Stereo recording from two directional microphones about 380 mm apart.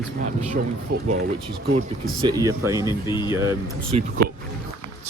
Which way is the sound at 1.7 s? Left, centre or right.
Centre.